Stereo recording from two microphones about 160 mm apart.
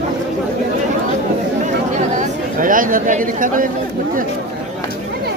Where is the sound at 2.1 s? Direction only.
55° right (ahead or behind).